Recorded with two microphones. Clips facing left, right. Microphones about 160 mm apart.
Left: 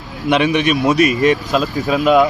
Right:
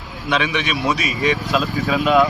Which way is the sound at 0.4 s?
45° left (ahead or behind).